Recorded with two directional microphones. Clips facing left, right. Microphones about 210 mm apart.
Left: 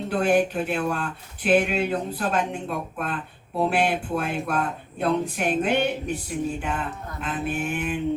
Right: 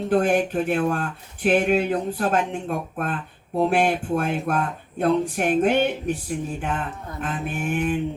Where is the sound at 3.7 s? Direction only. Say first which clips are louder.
Right 3 dB; 50° right (ahead or behind).